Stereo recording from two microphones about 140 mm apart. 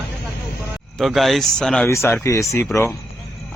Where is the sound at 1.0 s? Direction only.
Centre (ahead or behind).